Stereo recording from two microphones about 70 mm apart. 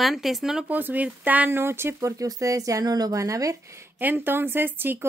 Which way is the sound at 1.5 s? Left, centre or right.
Right.